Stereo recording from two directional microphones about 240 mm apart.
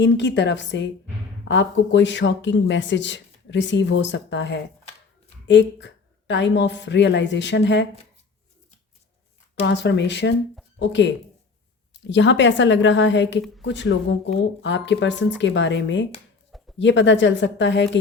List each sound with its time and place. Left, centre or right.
0.0 s speech: left
9.6 s speech: left